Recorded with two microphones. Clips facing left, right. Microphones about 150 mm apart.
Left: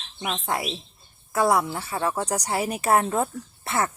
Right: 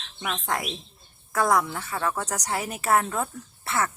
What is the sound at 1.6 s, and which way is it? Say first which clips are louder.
Speech: left 2 dB; 30° left (ahead or behind).